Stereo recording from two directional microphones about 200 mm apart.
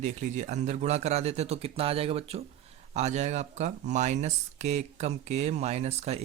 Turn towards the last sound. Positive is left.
turn(degrees=-35)  # may be behind; listen again after turning